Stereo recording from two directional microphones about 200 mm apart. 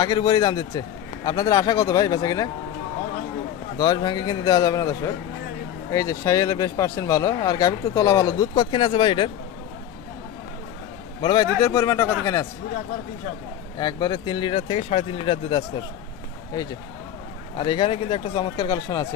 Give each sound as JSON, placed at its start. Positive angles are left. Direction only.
{"t": 0.0, "sound": "a man's voice", "side_deg": 20}
{"t": 3.8, "sound": "a man's voice", "side_deg": 20}
{"t": 11.2, "sound": "speech", "side_deg": 20}
{"t": 13.7, "sound": "a man's voice", "side_deg": 20}
{"t": 17.6, "sound": "a man's voice", "side_deg": 20}